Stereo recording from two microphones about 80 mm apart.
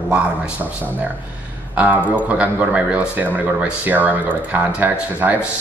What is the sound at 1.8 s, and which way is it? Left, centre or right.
A man's voice, centre.